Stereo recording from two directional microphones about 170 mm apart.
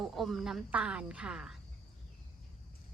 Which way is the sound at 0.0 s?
Centre (ahead or behind).